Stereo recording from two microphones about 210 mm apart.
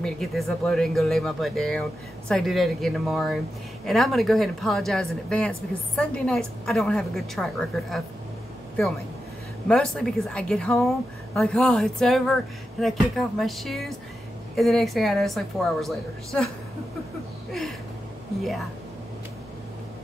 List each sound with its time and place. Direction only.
0.0 s speech: centre (ahead or behind)
9.7 s speech: 5° left (ahead or behind)
17.5 s a sound: centre (ahead or behind)